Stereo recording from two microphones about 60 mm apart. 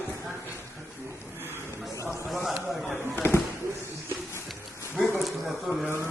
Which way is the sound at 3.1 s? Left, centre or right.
Left.